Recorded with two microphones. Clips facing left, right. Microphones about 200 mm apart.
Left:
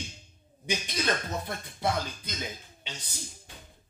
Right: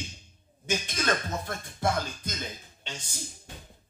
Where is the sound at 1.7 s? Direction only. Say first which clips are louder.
Right 1 dB; 45° right (ahead or behind).